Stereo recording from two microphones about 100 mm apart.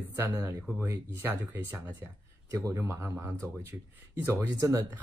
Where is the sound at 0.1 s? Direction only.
25° right (ahead or behind).